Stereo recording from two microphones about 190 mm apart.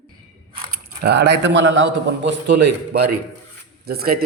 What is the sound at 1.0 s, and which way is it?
Speech, 65° right (ahead or behind).